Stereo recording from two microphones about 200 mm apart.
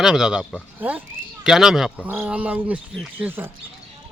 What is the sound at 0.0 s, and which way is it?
Speech, 5° right (ahead or behind).